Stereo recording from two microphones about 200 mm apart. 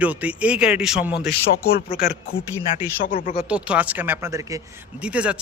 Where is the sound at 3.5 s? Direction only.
5° right (ahead or behind).